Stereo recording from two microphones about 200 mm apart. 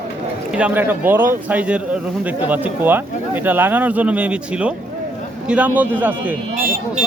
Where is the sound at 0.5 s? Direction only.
5° right (ahead or behind).